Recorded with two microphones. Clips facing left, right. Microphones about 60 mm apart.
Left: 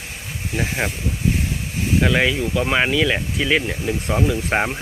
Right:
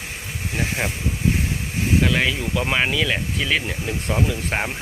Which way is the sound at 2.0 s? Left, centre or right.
Centre.